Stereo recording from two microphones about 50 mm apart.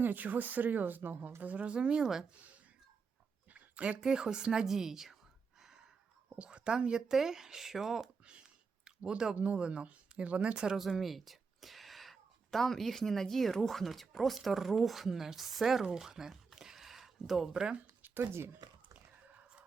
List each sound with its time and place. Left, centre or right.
0.0 s speech: right
1.4 s speech: right; by 2.2 s centre
3.5 s a sound: right
4.0 s speech: centre
5.5 s a sound: centre
6.4 s speech: centre
8.2 s speech: right
10.8 s speech: centre
16.0 s a sound: centre
18.0 s speech: right